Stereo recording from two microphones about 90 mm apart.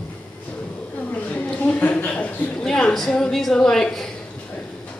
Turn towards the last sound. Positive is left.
turn(degrees=5)  # may be behind; listen again after turning